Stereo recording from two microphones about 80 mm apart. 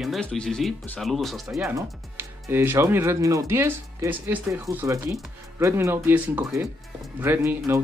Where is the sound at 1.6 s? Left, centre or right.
Right.